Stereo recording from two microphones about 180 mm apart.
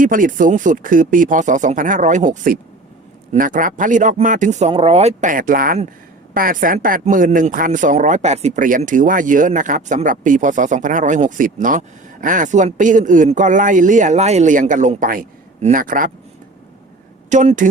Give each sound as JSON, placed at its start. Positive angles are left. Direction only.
{"t": 0.0, "sound": "speech", "side_deg": -50}
{"t": 17.2, "sound": "speech", "side_deg": -45}